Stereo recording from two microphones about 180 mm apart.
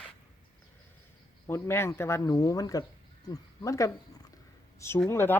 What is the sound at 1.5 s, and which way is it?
Speech, 15° left (ahead or behind).